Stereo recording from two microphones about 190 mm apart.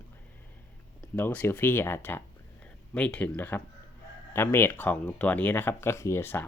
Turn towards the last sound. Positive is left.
turn(degrees=15)  # may be behind; listen again after turning